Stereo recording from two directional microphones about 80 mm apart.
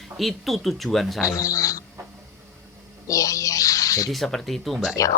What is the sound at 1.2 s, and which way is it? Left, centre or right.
Speech, left.